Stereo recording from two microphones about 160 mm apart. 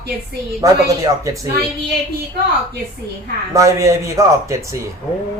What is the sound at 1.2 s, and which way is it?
Speech, 20° right (ahead or behind).